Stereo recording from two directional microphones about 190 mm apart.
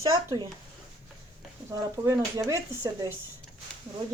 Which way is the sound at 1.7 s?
15° right (ahead or behind).